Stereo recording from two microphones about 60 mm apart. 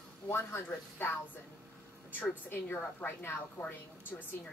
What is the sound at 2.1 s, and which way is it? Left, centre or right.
A woman's voice, left.